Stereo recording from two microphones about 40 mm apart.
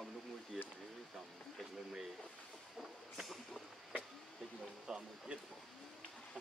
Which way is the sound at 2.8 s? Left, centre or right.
Centre.